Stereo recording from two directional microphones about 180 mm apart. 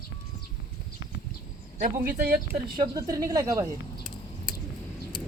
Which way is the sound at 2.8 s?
20° right (ahead or behind).